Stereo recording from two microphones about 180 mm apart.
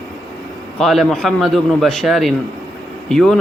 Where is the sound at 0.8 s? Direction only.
Centre (ahead or behind).